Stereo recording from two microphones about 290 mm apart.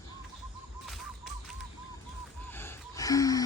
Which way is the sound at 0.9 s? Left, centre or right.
Centre.